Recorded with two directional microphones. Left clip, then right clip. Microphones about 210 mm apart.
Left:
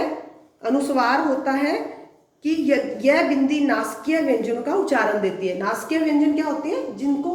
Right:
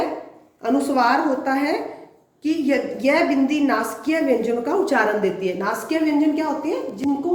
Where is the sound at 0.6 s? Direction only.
50° right (ahead or behind).